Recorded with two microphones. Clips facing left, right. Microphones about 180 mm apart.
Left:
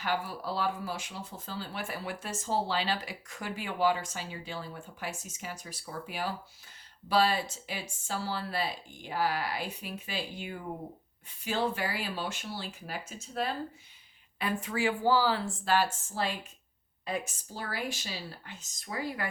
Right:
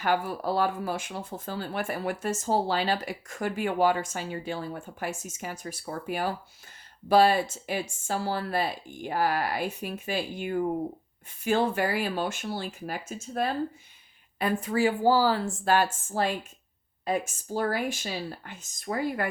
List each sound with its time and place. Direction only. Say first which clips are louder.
0.0 s speech: right 6 dB; 50° right (ahead or behind)